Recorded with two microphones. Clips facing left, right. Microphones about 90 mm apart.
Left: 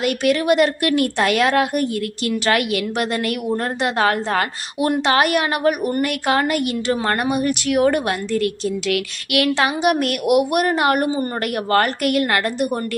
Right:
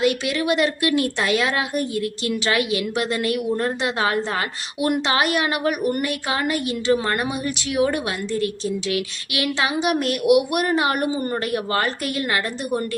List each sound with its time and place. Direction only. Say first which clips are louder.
0.0 s a woman's voice: left 3 dB; 50° left (ahead or behind)